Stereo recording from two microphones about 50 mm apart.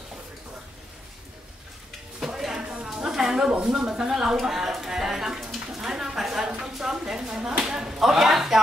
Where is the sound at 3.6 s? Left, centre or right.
Centre.